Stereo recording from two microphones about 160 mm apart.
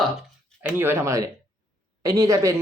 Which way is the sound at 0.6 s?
10° right (ahead or behind).